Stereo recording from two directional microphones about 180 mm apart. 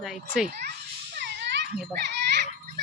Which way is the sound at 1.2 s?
75° right (ahead or behind).